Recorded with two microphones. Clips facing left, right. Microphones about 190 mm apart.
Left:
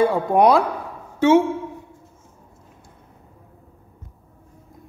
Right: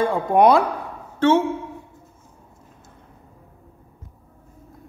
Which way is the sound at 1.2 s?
10° left (ahead or behind).